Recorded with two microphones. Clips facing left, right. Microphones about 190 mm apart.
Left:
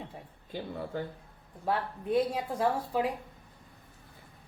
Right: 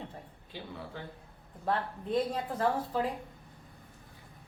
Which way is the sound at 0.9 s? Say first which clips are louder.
Left 11 dB; 45° left (ahead or behind).